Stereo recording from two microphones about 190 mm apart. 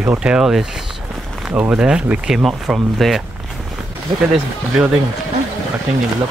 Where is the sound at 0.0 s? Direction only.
10° right (ahead or behind).